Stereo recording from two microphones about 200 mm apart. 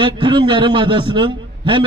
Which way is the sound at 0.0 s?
25° right (ahead or behind).